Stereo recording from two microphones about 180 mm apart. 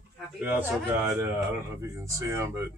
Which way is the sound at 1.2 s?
15° right (ahead or behind).